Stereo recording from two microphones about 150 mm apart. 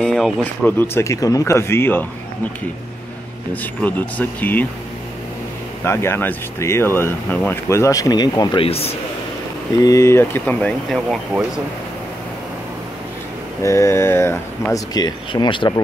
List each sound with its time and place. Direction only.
0.0 s speech: 5° left (ahead or behind)
3.8 s speech: 10° left (ahead or behind)
5.9 s speech: 15° left (ahead or behind)
8.6 s a man's voice: 40° left (ahead or behind)
9.8 s speech: 20° left (ahead or behind); by 11.1 s 5° left (ahead or behind)
13.6 s speech: 20° left (ahead or behind)
15.0 s speech: 30° left (ahead or behind)